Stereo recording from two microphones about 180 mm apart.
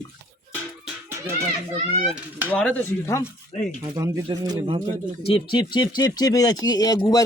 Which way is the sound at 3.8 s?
20° right (ahead or behind).